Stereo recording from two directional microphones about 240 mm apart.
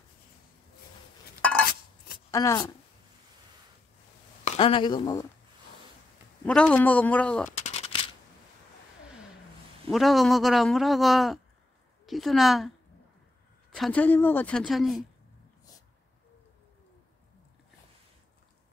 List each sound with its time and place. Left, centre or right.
2.3 s speech: centre
4.5 s speech: left
6.4 s a man's voice: centre
7.6 s shuffling cards: left
9.8 s a man's voice: centre
13.7 s a man's voice: centre